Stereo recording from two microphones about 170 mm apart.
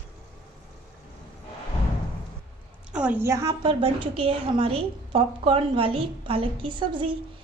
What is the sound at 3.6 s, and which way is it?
A woman's voice, 30° right (ahead or behind).